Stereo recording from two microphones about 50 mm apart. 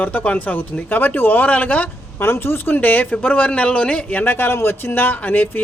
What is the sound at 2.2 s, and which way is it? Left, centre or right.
A man's voice, left.